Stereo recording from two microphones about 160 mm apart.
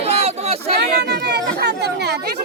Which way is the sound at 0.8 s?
90° right.